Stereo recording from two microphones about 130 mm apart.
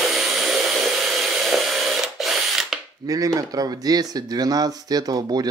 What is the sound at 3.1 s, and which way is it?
Speech, 25° right (ahead or behind).